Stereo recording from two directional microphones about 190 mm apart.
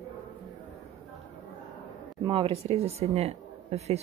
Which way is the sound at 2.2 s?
25° right (ahead or behind).